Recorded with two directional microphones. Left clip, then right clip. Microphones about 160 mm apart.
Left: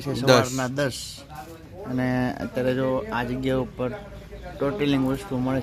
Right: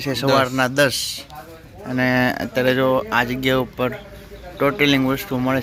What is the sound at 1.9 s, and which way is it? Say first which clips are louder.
Speech: right 8 dB; centre (ahead or behind).